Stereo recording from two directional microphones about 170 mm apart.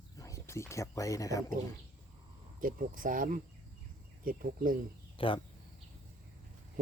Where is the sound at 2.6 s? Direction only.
55° right (ahead or behind).